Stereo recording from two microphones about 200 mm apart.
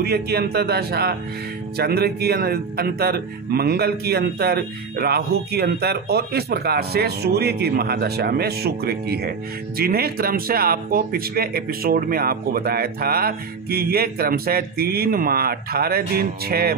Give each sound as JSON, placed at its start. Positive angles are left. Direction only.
{"t": 0.0, "sound": "a man's voice", "side_deg": -50}